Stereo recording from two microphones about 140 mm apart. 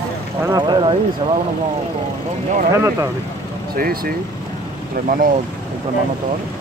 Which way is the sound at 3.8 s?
90° right.